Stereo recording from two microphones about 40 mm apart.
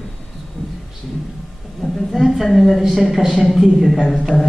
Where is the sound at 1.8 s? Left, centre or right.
Centre.